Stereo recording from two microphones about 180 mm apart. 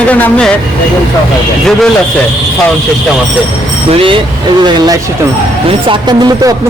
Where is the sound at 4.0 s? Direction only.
30° right (ahead or behind).